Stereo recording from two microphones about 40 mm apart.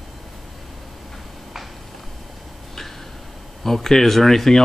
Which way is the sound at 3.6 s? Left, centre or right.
Centre.